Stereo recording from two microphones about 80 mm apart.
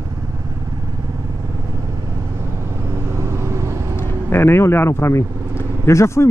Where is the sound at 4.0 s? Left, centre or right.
Left.